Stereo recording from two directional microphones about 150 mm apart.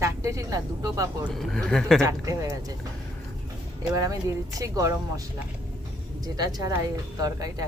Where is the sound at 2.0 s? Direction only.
20° right (ahead or behind).